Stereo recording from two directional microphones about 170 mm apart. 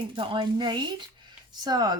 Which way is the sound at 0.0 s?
30° right (ahead or behind).